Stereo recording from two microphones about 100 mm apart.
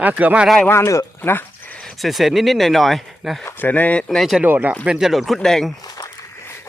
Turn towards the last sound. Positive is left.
turn(degrees=40)  # may be behind; listen again after turning